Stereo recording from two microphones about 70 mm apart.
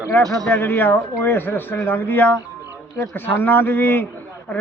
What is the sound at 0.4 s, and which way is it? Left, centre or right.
Speech, left.